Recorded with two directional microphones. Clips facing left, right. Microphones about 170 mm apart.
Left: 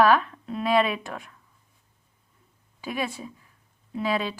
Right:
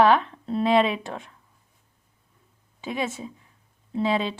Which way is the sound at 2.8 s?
20° right (ahead or behind).